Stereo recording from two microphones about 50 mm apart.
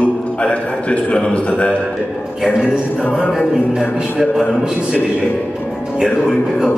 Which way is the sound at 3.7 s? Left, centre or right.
Centre.